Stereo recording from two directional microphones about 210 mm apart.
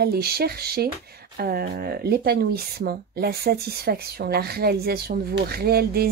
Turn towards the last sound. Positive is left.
turn(degrees=-45)  # may be behind; listen again after turning